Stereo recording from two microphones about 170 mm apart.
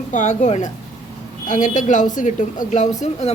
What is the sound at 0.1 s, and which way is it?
A woman's voice, 45° left (ahead or behind).